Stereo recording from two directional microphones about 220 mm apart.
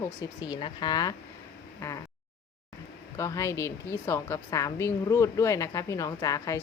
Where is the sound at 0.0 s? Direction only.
20° left (ahead or behind).